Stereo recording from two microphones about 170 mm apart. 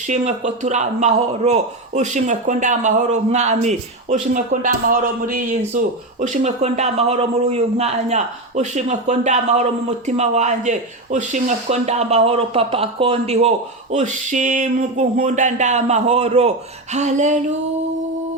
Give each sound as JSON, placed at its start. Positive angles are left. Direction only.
{"t": 0.1, "sound": "a man's voice", "side_deg": -45}
{"t": 4.6, "sound": "a man's voice", "side_deg": -55}